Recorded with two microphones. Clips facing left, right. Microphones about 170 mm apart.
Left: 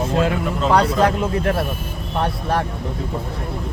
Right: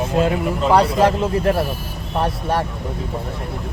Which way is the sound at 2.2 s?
Centre (ahead or behind).